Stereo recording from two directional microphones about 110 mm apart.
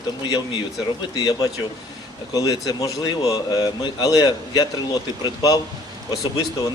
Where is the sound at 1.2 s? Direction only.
35° left (ahead or behind).